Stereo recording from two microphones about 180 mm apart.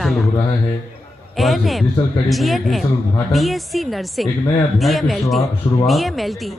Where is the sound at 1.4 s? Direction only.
Centre (ahead or behind).